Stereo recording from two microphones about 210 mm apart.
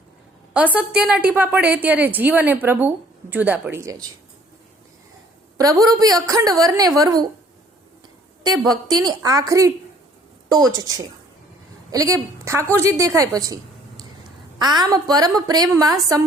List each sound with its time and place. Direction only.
0.5 s a woman's voice: 5° right (ahead or behind)
5.5 s a woman's voice: 15° right (ahead or behind)
8.4 s a woman's voice: 20° right (ahead or behind)